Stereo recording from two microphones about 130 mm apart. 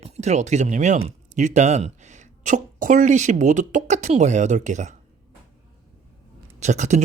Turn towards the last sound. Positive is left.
turn(degrees=-65)  # may be behind; listen again after turning